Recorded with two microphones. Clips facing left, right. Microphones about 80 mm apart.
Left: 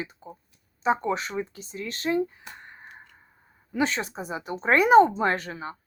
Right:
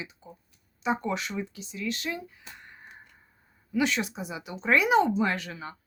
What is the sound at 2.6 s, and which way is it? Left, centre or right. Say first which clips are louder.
Caw: left 3 dB; left.